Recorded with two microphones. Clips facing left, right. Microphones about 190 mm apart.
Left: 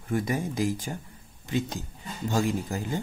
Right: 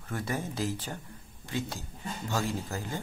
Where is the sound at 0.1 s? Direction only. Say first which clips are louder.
Left 6 dB; 15° left (ahead or behind).